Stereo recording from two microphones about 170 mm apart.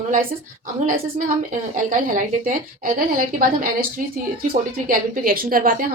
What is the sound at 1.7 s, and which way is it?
A woman's voice, 50° right (ahead or behind).